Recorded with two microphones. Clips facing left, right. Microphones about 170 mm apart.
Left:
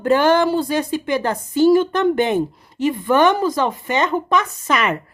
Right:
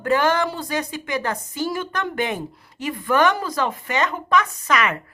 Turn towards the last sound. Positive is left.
turn(degrees=25)  # may be behind; listen again after turning